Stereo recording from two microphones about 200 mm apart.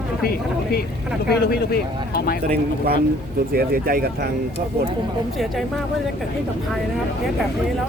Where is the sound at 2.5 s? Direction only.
50° right (ahead or behind).